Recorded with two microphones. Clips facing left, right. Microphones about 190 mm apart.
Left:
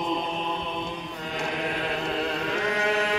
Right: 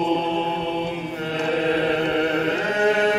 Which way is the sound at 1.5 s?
50° right (ahead or behind).